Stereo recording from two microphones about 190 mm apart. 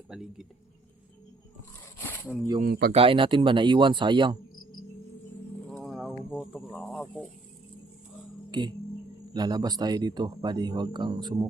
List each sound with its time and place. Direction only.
0.1 s speech: centre (ahead or behind)
2.0 s a sound: 10° left (ahead or behind)
2.6 s speech: 55° right (ahead or behind)
2.9 s speech: 30° right (ahead or behind)
5.6 s music: centre (ahead or behind)
6.3 s speech: 5° right (ahead or behind)
8.4 s speech: 25° right (ahead or behind)